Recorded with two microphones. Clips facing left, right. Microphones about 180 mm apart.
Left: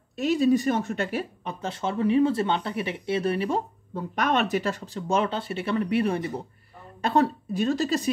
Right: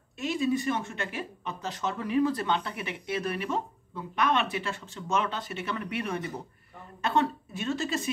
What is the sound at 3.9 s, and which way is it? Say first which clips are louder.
Speech: left 3 dB; 40° left (ahead or behind).